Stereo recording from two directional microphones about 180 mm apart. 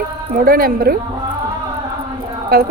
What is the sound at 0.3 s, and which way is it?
Speech, 55° right (ahead or behind).